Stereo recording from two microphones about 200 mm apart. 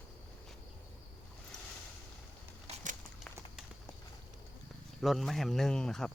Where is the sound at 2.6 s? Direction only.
40° right (ahead or behind).